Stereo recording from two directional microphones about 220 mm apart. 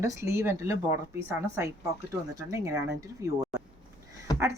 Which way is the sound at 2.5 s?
15° right (ahead or behind).